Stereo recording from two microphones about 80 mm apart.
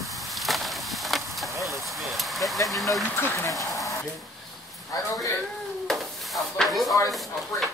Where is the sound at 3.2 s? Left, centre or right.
Left.